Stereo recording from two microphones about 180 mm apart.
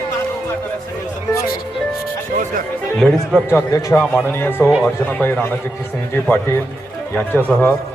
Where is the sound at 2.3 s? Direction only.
45° right (ahead or behind).